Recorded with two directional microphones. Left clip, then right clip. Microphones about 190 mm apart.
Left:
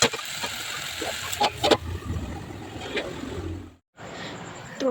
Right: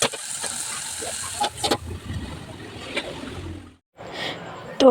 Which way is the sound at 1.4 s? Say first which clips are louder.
Left 3 dB; 20° left (ahead or behind).